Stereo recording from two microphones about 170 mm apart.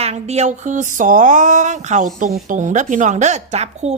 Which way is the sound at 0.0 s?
40° right (ahead or behind).